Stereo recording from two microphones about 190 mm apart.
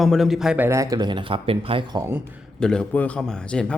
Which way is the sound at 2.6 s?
5° left (ahead or behind).